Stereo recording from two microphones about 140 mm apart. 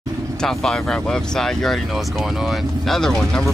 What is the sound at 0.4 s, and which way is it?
Speech, centre (ahead or behind).